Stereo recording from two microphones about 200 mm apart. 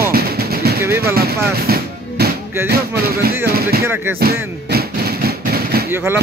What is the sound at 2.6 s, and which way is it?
Music, 50° right (ahead or behind).